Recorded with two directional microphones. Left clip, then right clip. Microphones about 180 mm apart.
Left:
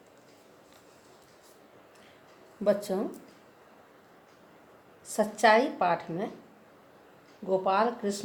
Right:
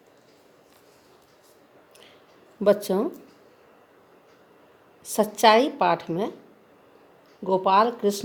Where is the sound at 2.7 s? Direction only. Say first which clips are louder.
Right 6 dB; 60° right (ahead or behind).